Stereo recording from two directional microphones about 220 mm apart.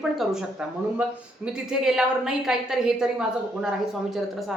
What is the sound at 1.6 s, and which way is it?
A woman's voice, 5° right (ahead or behind).